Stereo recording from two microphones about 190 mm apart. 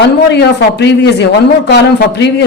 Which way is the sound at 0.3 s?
65° left (ahead or behind).